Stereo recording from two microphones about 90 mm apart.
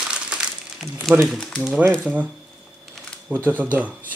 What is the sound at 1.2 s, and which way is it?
Speech, centre (ahead or behind).